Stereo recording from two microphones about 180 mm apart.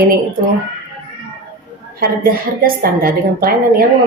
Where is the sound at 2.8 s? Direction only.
55° right (ahead or behind).